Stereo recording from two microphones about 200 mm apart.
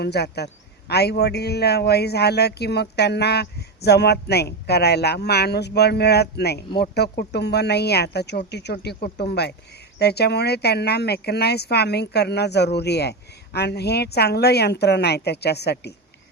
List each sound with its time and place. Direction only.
0.0 s a man's voice: 55° left (ahead or behind)